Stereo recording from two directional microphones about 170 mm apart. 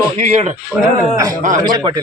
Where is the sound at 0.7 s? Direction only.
10° right (ahead or behind).